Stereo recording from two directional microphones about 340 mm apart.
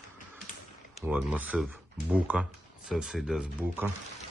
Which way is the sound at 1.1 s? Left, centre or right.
Centre.